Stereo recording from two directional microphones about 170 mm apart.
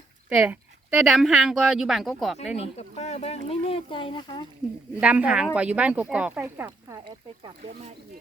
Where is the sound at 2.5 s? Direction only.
40° left (ahead or behind).